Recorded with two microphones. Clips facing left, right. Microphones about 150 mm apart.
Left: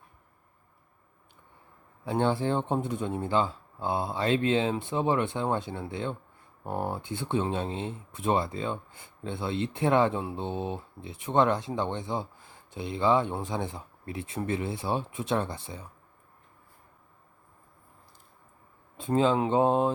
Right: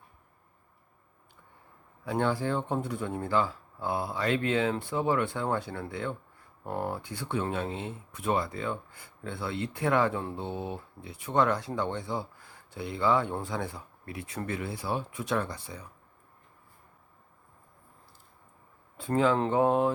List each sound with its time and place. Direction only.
2.0 s speech: 25° left (ahead or behind)
18.9 s speech: 20° left (ahead or behind)